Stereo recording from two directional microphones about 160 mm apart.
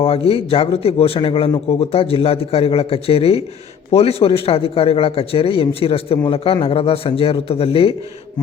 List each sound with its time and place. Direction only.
0.0 s speech: 35° left (ahead or behind)